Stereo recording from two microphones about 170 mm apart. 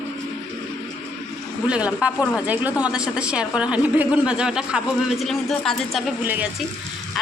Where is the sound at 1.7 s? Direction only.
5° right (ahead or behind).